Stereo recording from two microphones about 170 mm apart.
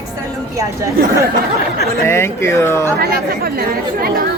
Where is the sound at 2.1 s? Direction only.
15° left (ahead or behind).